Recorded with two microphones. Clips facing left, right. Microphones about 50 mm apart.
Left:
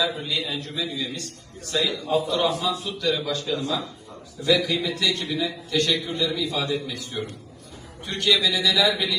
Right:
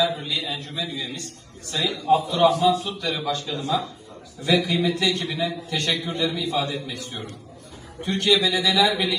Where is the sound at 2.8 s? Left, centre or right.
Right.